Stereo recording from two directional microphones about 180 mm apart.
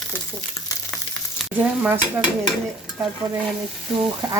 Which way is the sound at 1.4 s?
5° right (ahead or behind).